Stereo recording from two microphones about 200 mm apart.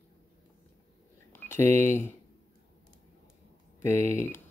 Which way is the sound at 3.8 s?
10° left (ahead or behind).